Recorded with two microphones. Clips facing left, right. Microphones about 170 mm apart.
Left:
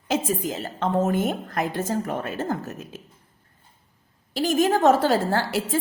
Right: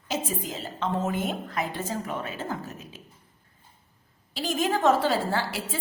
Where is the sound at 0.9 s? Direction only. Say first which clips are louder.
Left 7 dB; 45° left (ahead or behind).